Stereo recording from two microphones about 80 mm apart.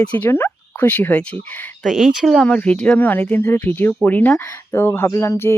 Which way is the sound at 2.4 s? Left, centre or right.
Centre.